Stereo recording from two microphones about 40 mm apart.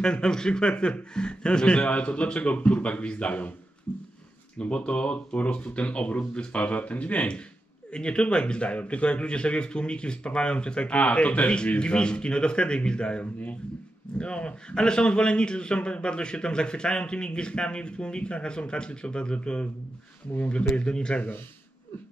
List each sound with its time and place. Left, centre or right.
0.0 s a man's voice: centre
4.6 s a man's voice: left